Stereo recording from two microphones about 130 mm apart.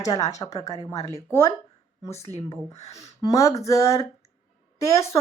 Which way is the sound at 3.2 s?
25° left (ahead or behind).